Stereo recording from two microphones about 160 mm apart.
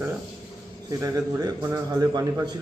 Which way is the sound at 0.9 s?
20° right (ahead or behind).